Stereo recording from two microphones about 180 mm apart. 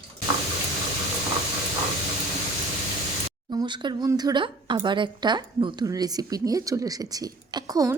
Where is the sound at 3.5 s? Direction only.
25° right (ahead or behind).